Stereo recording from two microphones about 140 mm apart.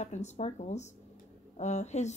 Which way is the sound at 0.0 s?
55° left (ahead or behind).